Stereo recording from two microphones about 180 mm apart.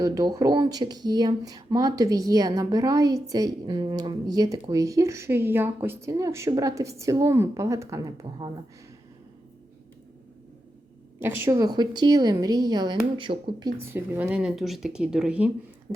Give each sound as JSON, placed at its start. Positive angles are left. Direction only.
{"t": 0.0, "sound": "speech", "side_deg": -20}
{"t": 11.2, "sound": "a woman's voice", "side_deg": -15}